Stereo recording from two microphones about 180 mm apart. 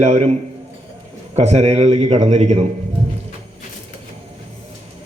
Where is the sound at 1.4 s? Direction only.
35° right (ahead or behind).